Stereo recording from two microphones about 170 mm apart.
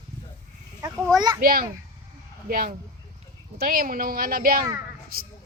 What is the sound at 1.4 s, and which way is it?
A woman's voice, 60° right (ahead or behind).